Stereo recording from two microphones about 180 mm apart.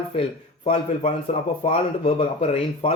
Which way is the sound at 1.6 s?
35° left (ahead or behind).